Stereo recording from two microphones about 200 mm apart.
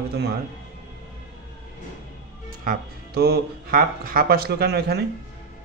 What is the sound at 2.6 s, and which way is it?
Speech, 50° right (ahead or behind).